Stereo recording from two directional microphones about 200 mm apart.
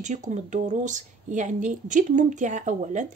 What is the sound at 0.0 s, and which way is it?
Speech, 35° right (ahead or behind).